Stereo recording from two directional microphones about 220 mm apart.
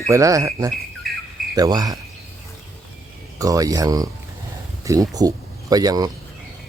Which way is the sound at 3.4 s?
15° right (ahead or behind).